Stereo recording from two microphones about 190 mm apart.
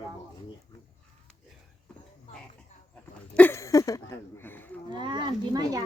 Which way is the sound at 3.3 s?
10° left (ahead or behind).